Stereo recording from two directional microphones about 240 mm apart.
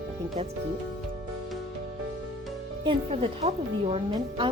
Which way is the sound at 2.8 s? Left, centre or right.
Right.